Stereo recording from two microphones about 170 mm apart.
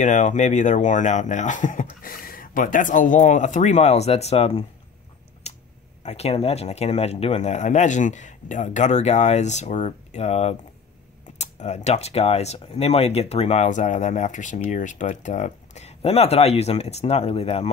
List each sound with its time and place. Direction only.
0.0 s speech: 45° left (ahead or behind)
5.4 s a sound: 40° left (ahead or behind)
6.0 s speech: 40° left (ahead or behind)